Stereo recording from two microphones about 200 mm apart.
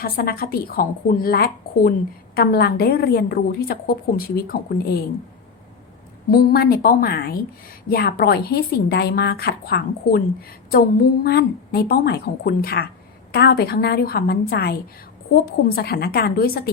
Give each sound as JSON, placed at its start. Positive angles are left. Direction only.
{"t": 0.0, "sound": "speech", "side_deg": 50}
{"t": 6.3, "sound": "speech", "side_deg": 50}